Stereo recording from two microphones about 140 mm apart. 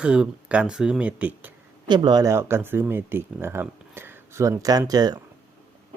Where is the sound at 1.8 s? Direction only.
30° right (ahead or behind).